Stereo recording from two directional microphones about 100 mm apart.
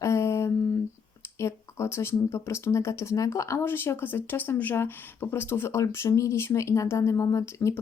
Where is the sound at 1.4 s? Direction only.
30° left (ahead or behind).